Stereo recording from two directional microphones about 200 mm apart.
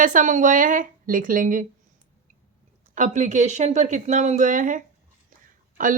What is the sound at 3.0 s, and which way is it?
A woman's voice, 40° right (ahead or behind).